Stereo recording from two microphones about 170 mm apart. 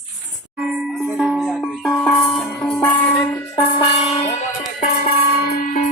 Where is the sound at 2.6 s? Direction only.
5° left (ahead or behind).